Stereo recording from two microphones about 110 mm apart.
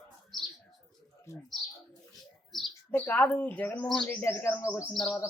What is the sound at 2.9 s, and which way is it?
A woman's voice, 15° left (ahead or behind).